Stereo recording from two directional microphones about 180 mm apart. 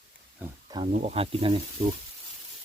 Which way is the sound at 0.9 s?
35° right (ahead or behind).